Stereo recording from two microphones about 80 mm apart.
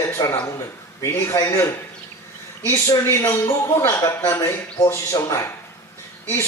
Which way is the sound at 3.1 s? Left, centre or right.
Left.